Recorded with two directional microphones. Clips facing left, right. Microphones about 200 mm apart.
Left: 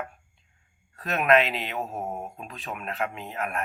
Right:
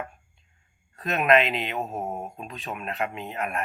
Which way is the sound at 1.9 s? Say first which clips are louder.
Right 1 dB; 20° right (ahead or behind).